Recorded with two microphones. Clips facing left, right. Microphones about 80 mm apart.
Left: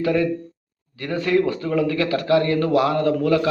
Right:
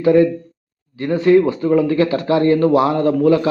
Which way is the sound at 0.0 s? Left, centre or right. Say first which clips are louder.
Right 7 dB; right.